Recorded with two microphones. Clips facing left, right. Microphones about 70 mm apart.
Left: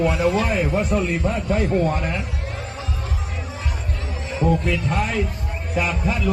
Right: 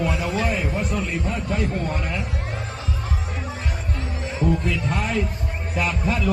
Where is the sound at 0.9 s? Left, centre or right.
Left.